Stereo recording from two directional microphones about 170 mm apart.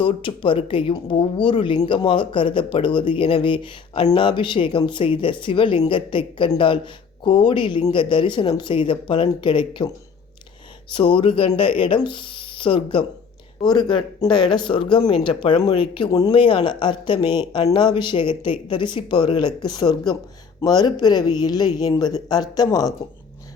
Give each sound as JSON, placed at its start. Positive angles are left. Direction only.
{"t": 0.0, "sound": "speech", "side_deg": 30}